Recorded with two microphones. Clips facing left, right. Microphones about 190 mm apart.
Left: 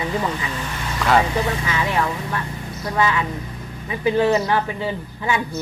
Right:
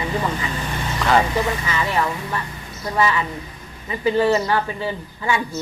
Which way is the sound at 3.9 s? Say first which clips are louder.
Even; 10° left (ahead or behind).